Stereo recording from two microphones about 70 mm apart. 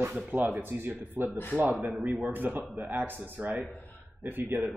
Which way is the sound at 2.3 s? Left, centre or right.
Right.